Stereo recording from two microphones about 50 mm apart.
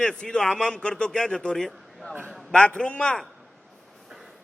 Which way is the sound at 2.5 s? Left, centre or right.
Left.